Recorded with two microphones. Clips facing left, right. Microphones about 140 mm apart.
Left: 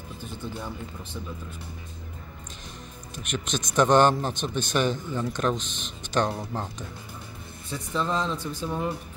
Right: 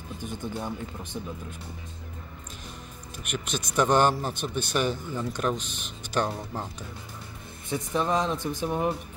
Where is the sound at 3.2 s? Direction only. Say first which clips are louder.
Left 2 dB; 5° right (ahead or behind).